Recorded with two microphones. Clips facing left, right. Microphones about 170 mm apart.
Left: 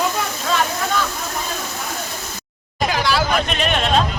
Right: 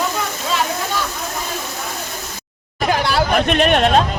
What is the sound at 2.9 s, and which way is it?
Hubbub, 50° right (ahead or behind).